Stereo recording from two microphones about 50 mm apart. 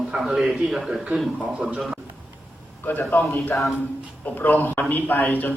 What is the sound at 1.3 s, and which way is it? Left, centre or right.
Speech, right.